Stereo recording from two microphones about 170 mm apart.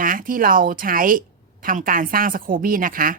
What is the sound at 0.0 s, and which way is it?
A woman's voice, 55° right (ahead or behind).